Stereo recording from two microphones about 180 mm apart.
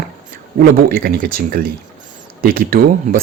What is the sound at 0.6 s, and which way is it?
Speech, 55° right (ahead or behind).